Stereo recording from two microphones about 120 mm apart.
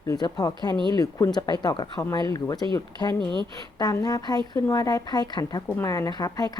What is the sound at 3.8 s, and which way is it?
Speech, 30° left (ahead or behind).